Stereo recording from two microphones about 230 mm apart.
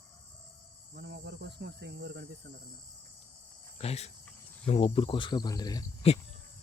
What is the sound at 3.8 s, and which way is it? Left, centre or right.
Speech, left.